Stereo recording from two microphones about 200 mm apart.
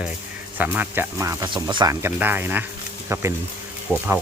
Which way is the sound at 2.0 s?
10° right (ahead or behind).